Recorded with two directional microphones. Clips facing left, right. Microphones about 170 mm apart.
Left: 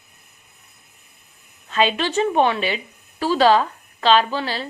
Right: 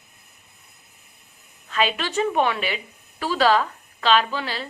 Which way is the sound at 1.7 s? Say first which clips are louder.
Left 4 dB; 25° left (ahead or behind).